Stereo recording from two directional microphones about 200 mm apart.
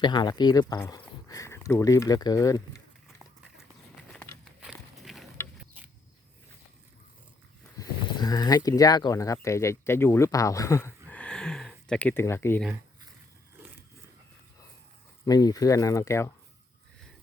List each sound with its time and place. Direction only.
0.0 s speech: 20° left (ahead or behind)
4.1 s biting: 5° left (ahead or behind)
4.6 s a sound: centre (ahead or behind)
7.8 s speech: 20° left (ahead or behind)
15.2 s speech: 20° left (ahead or behind)